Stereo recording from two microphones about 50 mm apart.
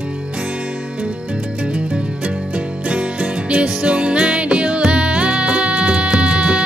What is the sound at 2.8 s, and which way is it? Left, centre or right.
Music, right.